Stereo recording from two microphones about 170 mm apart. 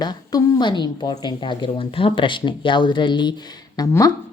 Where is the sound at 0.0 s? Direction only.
25° left (ahead or behind).